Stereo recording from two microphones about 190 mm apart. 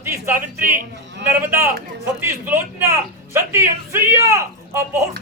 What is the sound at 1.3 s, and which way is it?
Speech, 10° right (ahead or behind).